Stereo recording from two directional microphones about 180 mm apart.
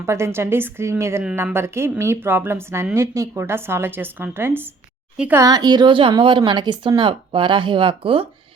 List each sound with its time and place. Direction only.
0.0 s a woman's voice: 15° right (ahead or behind)
5.4 s speech: 20° right (ahead or behind)